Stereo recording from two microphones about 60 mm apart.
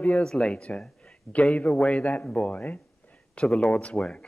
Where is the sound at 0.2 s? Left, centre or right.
Centre.